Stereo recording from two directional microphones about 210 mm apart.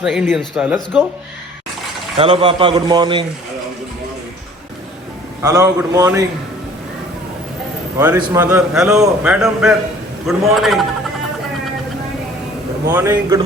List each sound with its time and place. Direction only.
0.0 s a man's voice: 5° right (ahead or behind)
2.1 s a man's voice: 25° right (ahead or behind)
5.4 s a man's voice: 15° right (ahead or behind)
7.9 s a man's voice: 10° right (ahead or behind)
12.9 s a man's voice: 10° right (ahead or behind)